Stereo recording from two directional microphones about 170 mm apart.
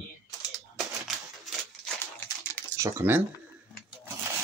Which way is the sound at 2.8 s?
15° right (ahead or behind).